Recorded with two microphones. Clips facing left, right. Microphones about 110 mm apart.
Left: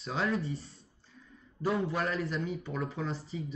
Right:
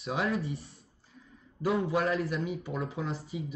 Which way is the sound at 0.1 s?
5° right (ahead or behind).